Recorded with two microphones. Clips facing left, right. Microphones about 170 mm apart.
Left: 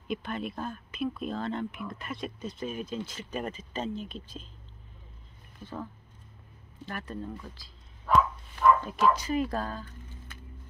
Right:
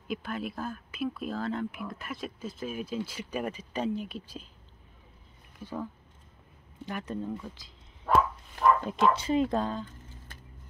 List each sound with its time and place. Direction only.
0.1 s speech: 5° right (ahead or behind)
5.6 s speech: 10° right (ahead or behind)
6.9 s speech: 15° right (ahead or behind)
8.8 s speech: 25° right (ahead or behind)